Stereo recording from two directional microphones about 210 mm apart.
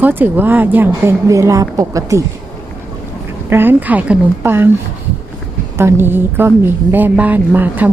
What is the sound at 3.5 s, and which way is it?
A woman's voice, 10° right (ahead or behind).